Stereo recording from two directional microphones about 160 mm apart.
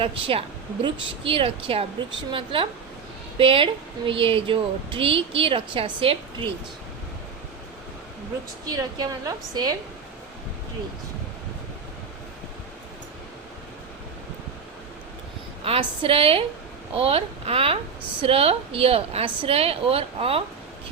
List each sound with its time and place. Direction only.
0.0 s speech: 35° right (ahead or behind)
8.7 s a woman's voice: 25° right (ahead or behind)
15.6 s speech: 35° right (ahead or behind)